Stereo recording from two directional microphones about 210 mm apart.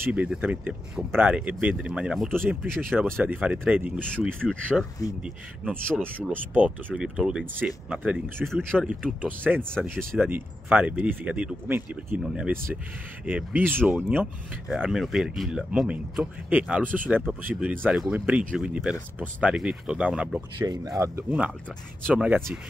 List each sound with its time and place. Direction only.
0.0 s speech: 5° right (ahead or behind)
4.0 s speech: 5° left (ahead or behind)
6.1 s speech: 5° left (ahead or behind)
9.6 s speech: 5° left (ahead or behind)
9.8 s speech: 10° right (ahead or behind)
20.6 s speech: 20° right (ahead or behind)
21.5 s speech: 5° left (ahead or behind)
22.1 s speech: 5° right (ahead or behind)